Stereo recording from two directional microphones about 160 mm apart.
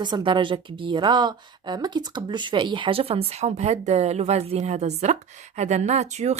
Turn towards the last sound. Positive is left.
turn(degrees=-45)  # may be behind; listen again after turning